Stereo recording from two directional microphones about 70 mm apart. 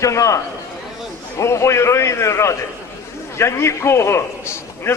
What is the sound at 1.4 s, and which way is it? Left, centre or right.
A man's voice, left.